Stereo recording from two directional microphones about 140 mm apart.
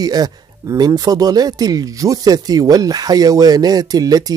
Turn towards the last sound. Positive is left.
turn(degrees=-25)  # may be behind; listen again after turning